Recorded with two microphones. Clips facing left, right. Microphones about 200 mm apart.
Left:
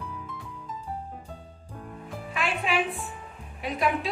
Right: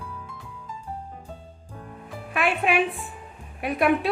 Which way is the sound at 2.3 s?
60° right (ahead or behind).